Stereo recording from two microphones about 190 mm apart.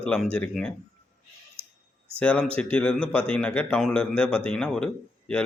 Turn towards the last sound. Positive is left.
turn(degrees=5)  # may be behind; listen again after turning